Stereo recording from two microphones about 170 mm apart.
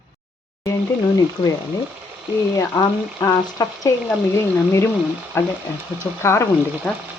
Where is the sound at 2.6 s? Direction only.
15° left (ahead or behind).